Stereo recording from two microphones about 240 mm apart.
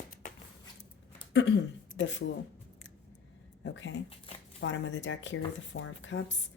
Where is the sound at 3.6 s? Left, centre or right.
Left.